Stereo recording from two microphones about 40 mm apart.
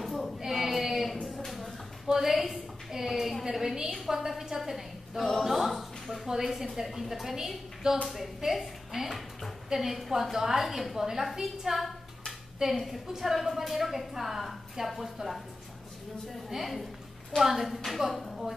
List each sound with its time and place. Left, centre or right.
0.0 s child singing: centre
0.4 s child singing: centre
1.2 s a sound: centre
2.1 s a woman's voice: centre
11.3 s a sound: centre
12.7 s a woman's voice: centre
16.4 s a woman's voice: centre